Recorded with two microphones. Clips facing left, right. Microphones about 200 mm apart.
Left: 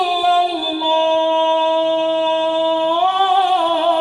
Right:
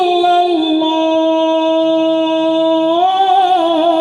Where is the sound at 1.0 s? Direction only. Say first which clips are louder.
Right 4 dB; 45° right (ahead or behind).